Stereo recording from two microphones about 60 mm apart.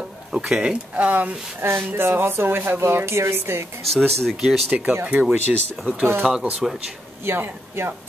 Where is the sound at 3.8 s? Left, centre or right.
Centre.